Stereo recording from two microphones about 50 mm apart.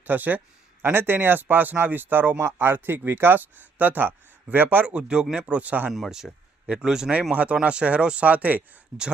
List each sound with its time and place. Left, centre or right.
0.0 s speech: right
4.9 s speech: right
6.1 s a sound: centre
6.8 s speech: centre
7.3 s speech: right
8.9 s speech: centre